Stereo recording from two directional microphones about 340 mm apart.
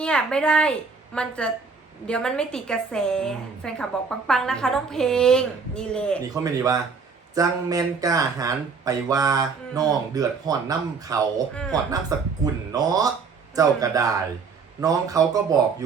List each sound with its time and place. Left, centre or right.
0.0 s a woman's voice: centre
6.3 s speech: centre